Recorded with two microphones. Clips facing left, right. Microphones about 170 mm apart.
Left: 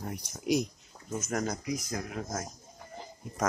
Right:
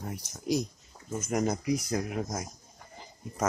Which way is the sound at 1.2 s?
10° right (ahead or behind).